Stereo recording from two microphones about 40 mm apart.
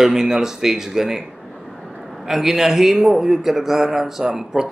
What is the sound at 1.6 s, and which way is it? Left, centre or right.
Vehicle, centre.